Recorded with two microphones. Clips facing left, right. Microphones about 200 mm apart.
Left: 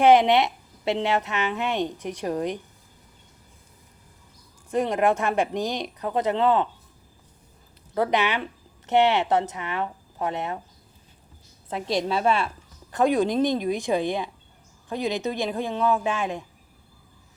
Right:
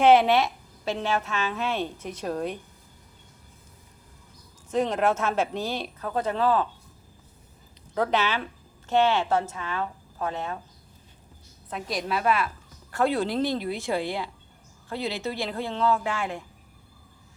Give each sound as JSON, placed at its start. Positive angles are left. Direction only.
{"t": 0.0, "sound": "a woman's voice", "side_deg": 15}
{"t": 4.7, "sound": "speech", "side_deg": 10}
{"t": 7.9, "sound": "a woman's voice", "side_deg": 15}
{"t": 11.7, "sound": "a woman's voice", "side_deg": 25}
{"t": 12.9, "sound": "speech", "side_deg": 15}